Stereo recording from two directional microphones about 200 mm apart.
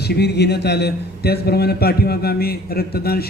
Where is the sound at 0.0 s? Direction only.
55° left (ahead or behind).